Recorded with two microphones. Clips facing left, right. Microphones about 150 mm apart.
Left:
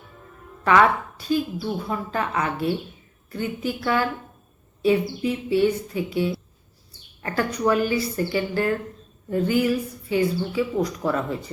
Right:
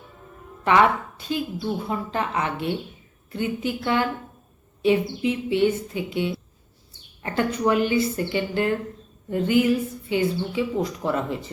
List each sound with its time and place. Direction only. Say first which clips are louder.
0.6 s speech: left 1 dB; 20° right (ahead or behind)